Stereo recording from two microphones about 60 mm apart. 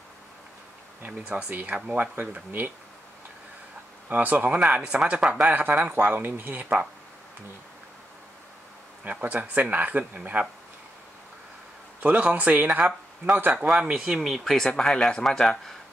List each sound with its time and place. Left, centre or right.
1.0 s speech: right
4.1 s speech: right
9.0 s speech: right
12.0 s speech: right
13.5 s speech: centre